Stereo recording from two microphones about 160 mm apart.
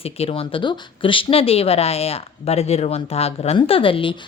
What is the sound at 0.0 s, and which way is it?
Speech, 35° left (ahead or behind).